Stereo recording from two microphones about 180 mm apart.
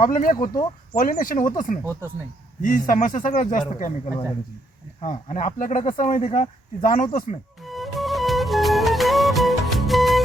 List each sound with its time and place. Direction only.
0.0 s speech: 50° left (ahead or behind)
7.6 s music: centre (ahead or behind)